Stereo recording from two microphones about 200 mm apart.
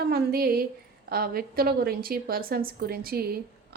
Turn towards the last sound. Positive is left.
turn(degrees=-50)  # may be behind; listen again after turning